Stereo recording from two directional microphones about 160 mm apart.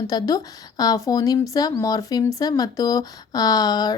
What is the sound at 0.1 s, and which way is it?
A woman's voice, 25° left (ahead or behind).